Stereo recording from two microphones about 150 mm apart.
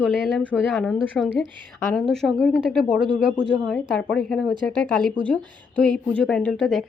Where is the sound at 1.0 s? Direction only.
5° left (ahead or behind).